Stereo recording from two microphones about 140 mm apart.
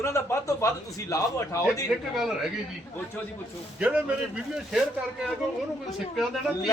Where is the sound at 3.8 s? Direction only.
10° right (ahead or behind).